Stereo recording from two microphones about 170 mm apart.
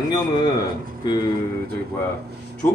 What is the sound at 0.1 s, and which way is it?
Speech, 25° left (ahead or behind).